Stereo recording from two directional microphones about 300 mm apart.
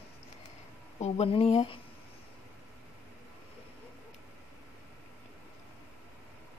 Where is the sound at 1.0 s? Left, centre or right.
Centre.